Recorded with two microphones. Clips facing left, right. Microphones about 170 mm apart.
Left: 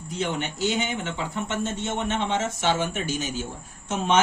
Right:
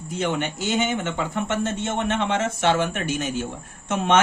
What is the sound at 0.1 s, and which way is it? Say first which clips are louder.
A man's voice: right 3 dB; 50° right (ahead or behind).